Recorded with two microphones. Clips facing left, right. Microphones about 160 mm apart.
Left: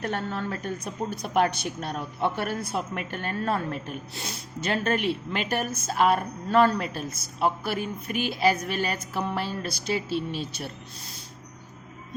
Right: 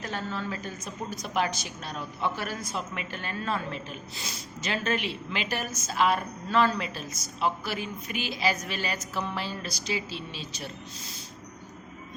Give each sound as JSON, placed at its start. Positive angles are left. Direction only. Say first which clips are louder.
{"t": 0.0, "sound": "a woman's voice", "louder": "left 4 dB", "side_deg": 60}